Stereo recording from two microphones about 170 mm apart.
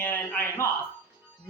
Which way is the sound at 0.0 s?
10° left (ahead or behind).